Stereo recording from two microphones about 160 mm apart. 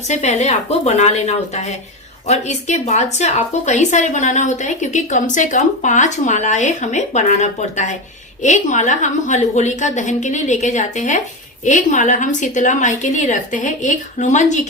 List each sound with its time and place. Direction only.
0.1 s a woman's voice: 45° left (ahead or behind)